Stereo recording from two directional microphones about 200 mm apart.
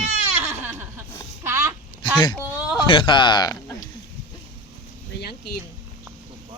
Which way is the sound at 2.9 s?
25° left (ahead or behind).